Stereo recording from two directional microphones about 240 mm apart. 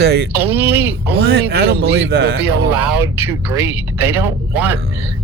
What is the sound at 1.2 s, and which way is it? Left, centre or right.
Speech, right.